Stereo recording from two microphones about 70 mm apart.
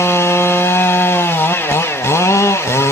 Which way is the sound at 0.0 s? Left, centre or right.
Left.